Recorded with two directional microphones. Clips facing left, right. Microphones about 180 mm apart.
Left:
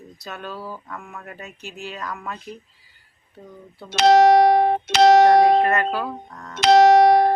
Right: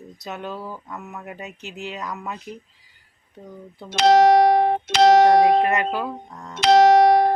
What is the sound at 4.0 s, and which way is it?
Speech, 60° left (ahead or behind).